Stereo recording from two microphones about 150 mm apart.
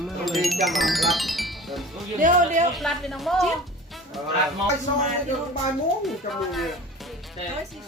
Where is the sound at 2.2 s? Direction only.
55° right (ahead or behind).